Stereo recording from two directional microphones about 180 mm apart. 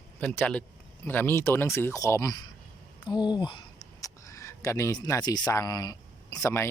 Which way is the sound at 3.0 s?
25° left (ahead or behind).